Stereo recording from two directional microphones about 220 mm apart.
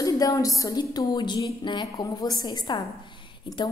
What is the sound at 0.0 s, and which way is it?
A woman's voice, 15° left (ahead or behind).